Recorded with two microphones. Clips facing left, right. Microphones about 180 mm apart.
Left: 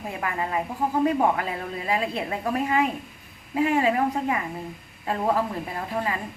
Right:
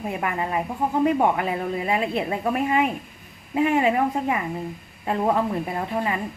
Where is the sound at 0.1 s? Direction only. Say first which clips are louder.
Right 1 dB; 25° right (ahead or behind).